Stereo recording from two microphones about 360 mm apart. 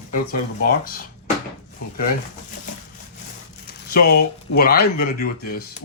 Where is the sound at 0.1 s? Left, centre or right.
Left.